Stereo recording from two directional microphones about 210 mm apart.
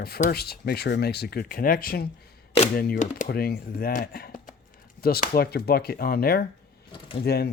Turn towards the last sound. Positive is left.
turn(degrees=50)  # may be behind; listen again after turning